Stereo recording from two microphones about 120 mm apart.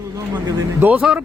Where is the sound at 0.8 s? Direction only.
15° right (ahead or behind).